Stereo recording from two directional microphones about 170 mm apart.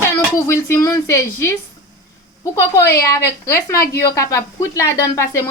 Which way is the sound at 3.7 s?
60° left (ahead or behind).